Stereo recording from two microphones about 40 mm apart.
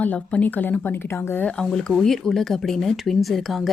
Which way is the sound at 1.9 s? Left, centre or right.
Centre.